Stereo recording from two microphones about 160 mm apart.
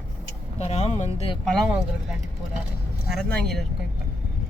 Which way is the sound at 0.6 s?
40° left (ahead or behind).